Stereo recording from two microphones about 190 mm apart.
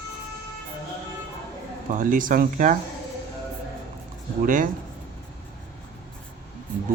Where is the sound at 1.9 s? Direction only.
45° right (ahead or behind).